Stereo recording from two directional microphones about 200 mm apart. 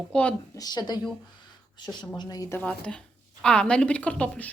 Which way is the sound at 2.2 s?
20° left (ahead or behind).